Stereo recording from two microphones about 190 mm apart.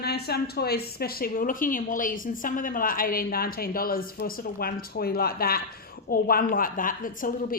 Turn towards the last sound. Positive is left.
turn(degrees=45)  # may be behind; listen again after turning